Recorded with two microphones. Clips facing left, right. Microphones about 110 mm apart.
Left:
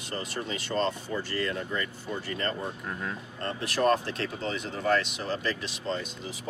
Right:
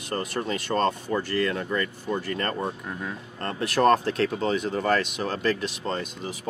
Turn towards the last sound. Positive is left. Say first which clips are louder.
# right 3 dB
turn(degrees=-55)  # may be behind; listen again after turning